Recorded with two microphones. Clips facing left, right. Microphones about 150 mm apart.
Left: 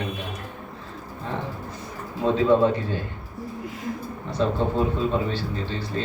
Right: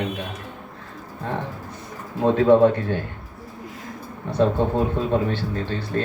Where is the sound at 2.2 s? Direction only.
60° right (ahead or behind).